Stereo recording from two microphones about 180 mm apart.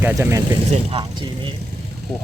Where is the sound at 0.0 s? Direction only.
15° right (ahead or behind).